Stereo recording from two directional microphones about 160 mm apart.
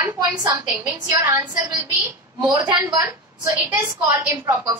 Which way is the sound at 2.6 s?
10° right (ahead or behind).